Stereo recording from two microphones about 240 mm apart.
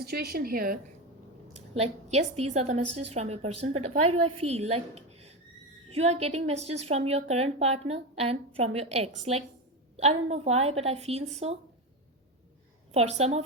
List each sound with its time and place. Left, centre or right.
0.0 s a woman's voice: right
1.5 s a woman's voice: right
12.9 s a woman's voice: right